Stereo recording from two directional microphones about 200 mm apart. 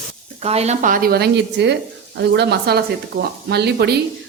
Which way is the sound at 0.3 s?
30° right (ahead or behind).